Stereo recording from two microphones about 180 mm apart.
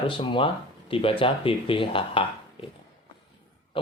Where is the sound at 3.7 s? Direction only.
30° left (ahead or behind).